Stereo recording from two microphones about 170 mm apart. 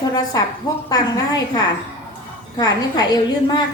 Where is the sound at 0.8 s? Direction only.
20° left (ahead or behind).